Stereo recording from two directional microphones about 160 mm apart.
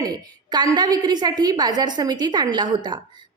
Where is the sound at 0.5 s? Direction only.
25° right (ahead or behind).